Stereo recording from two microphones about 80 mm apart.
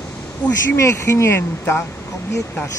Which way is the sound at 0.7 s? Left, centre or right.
Left.